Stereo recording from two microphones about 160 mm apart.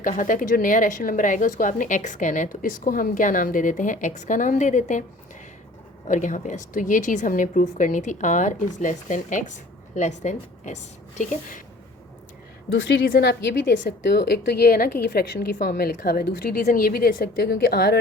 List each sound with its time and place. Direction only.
0.0 s a woman's voice: 55° left (ahead or behind)
6.1 s a woman's voice: 50° left (ahead or behind)
12.9 s a woman's voice: 85° left; by 14.8 s 70° left (ahead or behind)
15.0 s a woman's voice: 90° left
15.5 s a woman's voice: 70° left (ahead or behind)